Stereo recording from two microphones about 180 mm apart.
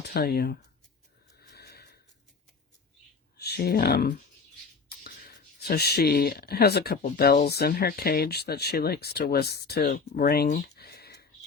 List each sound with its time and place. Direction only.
0.1 s speech: 60° left (ahead or behind)
1.4 s a sound: 65° left (ahead or behind)
3.3 s speech: 65° left (ahead or behind)